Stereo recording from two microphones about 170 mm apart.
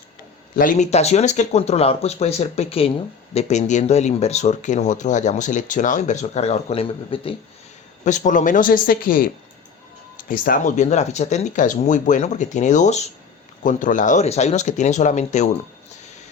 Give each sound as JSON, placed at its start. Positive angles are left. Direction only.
{"t": 0.5, "sound": "speech", "side_deg": 50}
{"t": 8.0, "sound": "speech", "side_deg": 45}